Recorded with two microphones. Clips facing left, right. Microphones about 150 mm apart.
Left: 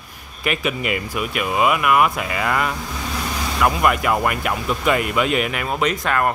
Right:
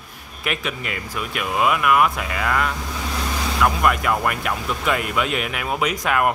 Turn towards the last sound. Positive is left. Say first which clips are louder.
# left 1 dB
turn(degrees=-10)  # may be behind; listen again after turning